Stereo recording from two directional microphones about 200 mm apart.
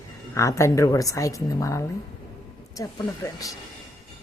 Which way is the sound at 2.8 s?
15° left (ahead or behind).